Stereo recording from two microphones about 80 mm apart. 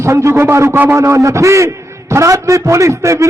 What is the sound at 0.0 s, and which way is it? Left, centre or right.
A man's voice, right.